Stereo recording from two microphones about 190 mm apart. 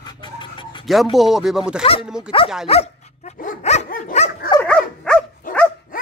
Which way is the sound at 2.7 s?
35° left (ahead or behind).